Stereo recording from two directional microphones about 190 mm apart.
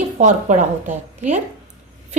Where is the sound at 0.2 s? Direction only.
40° right (ahead or behind).